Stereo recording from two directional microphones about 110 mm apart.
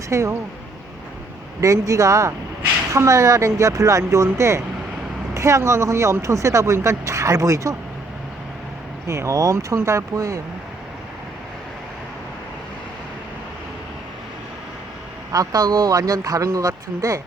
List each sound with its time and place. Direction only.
0.1 s speech: 25° right (ahead or behind)
1.6 s speech: 30° right (ahead or behind)
9.0 s speech: 25° right (ahead or behind)
15.3 s speech: 35° right (ahead or behind)